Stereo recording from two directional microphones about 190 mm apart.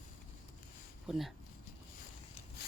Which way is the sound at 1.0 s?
Centre (ahead or behind).